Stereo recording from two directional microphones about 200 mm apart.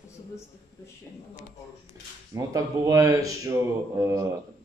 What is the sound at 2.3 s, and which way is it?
Speech, 15° right (ahead or behind).